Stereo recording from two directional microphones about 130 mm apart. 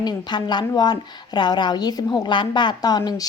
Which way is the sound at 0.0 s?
35° left (ahead or behind).